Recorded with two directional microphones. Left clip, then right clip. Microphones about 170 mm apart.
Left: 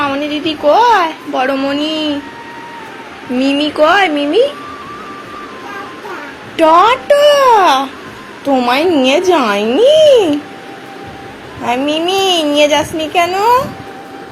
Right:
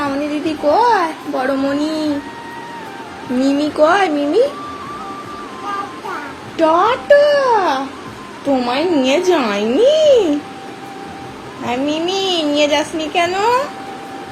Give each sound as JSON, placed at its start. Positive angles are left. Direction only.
{"t": 0.0, "sound": "a sound", "side_deg": 0}
{"t": 0.8, "sound": "speech", "side_deg": 0}
{"t": 3.4, "sound": "speech", "side_deg": 5}
{"t": 6.6, "sound": "a woman's voice", "side_deg": 20}
{"t": 11.6, "sound": "a woman's voice", "side_deg": 20}